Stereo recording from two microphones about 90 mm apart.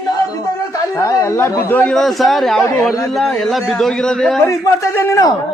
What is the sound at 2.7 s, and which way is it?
Speech, 35° left (ahead or behind).